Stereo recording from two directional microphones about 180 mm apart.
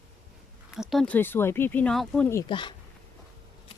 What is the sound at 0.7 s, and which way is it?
Speech, centre (ahead or behind).